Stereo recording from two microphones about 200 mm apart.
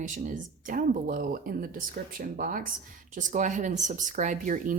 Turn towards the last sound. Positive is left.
turn(degrees=-40)  # may be behind; listen again after turning